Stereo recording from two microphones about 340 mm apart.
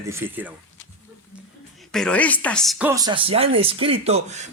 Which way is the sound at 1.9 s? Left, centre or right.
Centre.